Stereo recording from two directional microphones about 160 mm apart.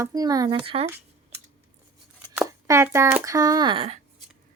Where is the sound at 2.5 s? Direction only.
20° right (ahead or behind).